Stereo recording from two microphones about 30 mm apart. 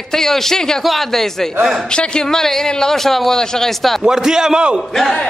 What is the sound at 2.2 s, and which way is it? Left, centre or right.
Speech, centre.